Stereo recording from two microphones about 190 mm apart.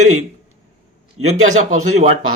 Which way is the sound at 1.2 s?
90° right.